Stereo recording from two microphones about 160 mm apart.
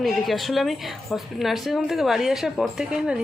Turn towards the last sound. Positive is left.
turn(degrees=-5)  # may be behind; listen again after turning